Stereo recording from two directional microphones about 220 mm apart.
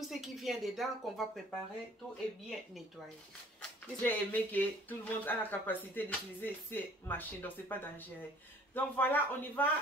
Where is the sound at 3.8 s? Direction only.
5° left (ahead or behind).